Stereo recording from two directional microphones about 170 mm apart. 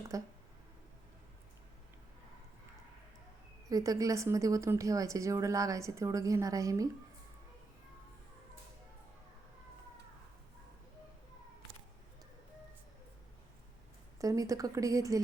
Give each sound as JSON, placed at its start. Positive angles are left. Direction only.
{"t": 0.1, "sound": "speech", "side_deg": -20}
{"t": 3.7, "sound": "speech", "side_deg": -20}
{"t": 14.2, "sound": "speech", "side_deg": -20}